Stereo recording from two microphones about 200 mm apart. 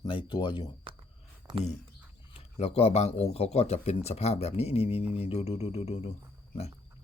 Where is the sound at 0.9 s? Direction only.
25° right (ahead or behind).